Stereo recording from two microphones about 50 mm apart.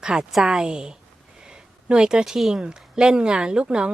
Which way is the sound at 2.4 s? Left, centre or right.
Centre.